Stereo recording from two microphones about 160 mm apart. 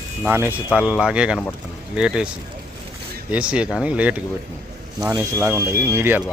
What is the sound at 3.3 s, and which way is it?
Speech, 5° right (ahead or behind).